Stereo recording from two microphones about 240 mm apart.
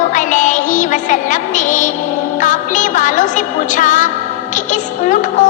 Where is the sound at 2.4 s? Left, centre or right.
Left.